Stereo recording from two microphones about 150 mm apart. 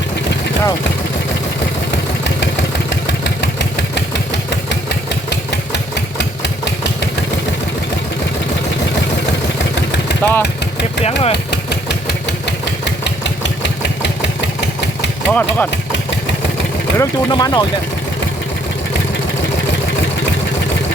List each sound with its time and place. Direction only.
10.2 s vehicle: 10° left (ahead or behind)
11.0 s speech: 40° left (ahead or behind)
15.3 s speech: 10° left (ahead or behind)
17.0 s speech: 25° left (ahead or behind)